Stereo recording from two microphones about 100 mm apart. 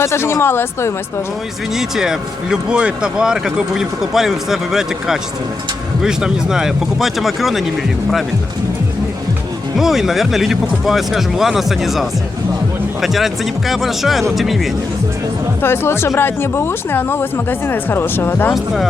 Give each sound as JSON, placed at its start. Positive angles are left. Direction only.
{"t": 0.0, "sound": "speech", "side_deg": 25}
{"t": 1.7, "sound": "speech", "side_deg": -5}
{"t": 9.7, "sound": "speech", "side_deg": -5}
{"t": 15.6, "sound": "speech", "side_deg": 25}
{"t": 18.5, "sound": "speech", "side_deg": 0}